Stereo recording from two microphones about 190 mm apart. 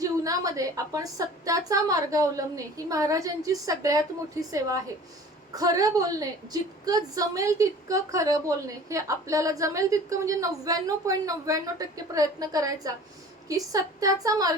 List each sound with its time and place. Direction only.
0.0 s a woman's voice: 20° right (ahead or behind)